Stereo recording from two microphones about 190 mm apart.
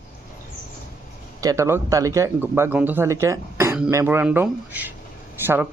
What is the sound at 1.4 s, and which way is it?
Speech, 15° right (ahead or behind).